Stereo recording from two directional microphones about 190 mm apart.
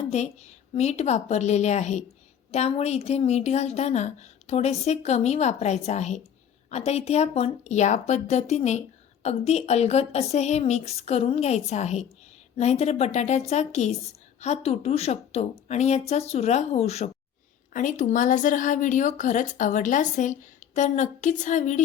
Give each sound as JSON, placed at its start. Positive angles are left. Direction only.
{"t": 0.1, "sound": "speech", "side_deg": 35}